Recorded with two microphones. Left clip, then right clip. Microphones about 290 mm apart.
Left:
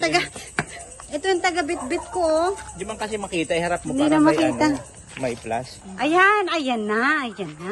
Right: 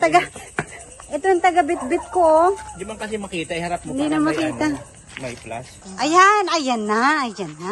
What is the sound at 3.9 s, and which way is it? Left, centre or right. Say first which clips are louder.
Speech: left 3 dB; centre.